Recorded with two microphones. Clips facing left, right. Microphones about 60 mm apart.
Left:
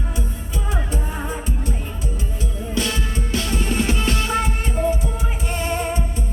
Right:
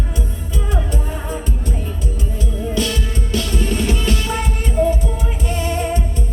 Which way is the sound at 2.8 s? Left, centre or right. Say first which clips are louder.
Even; centre.